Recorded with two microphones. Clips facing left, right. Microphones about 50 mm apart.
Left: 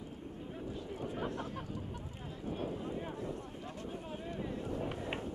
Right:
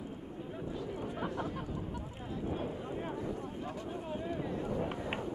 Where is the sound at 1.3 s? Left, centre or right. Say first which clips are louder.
Right 3 dB; right.